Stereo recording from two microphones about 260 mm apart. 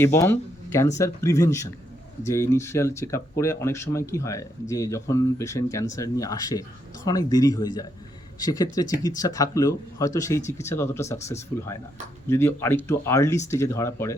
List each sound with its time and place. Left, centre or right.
0.0 s speech: centre